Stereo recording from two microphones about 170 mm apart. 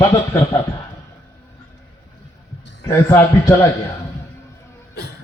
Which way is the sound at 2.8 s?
15° left (ahead or behind).